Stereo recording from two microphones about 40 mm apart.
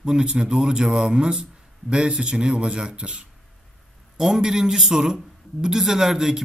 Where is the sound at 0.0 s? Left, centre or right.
Centre.